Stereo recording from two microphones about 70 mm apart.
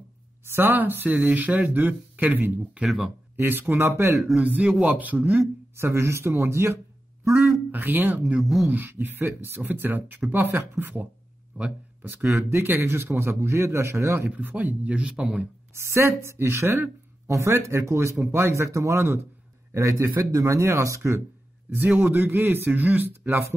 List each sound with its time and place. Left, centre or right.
0.5 s speech: right
2.8 s speech: centre
3.3 s a man's voice: right
4.4 s speech: centre
5.4 s a man's voice: right
7.7 s speech: right
11.6 s speech: centre
12.0 s a man's voice: right
14.3 s speech: right
15.7 s a man's voice: right
22.0 s speech: right